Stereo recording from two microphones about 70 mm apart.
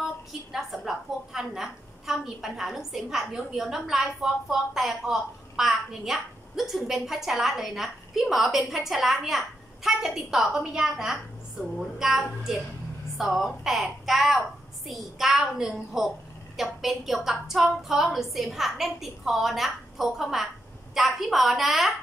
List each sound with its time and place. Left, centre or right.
0.5 s a woman's voice: centre